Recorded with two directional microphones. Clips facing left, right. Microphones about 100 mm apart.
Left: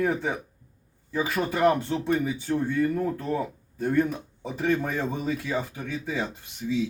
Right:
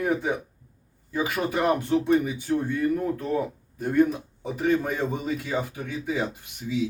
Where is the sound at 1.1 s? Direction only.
15° right (ahead or behind).